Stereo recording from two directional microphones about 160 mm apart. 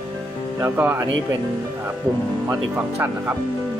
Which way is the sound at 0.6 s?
15° right (ahead or behind).